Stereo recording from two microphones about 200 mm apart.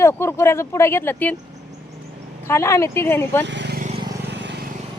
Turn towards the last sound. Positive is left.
turn(degrees=-60)  # may be behind; listen again after turning